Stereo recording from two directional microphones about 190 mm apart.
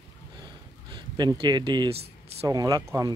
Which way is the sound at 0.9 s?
20° right (ahead or behind).